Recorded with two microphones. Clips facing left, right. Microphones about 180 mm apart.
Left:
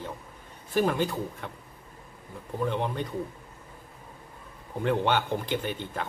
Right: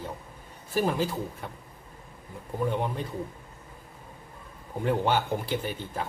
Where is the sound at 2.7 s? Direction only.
5° right (ahead or behind).